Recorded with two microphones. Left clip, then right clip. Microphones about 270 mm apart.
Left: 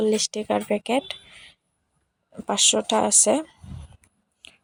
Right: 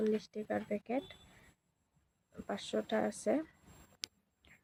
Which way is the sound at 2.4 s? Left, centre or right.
Left.